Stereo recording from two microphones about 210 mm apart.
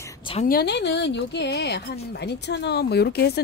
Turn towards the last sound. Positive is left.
turn(degrees=50)  # may be behind; listen again after turning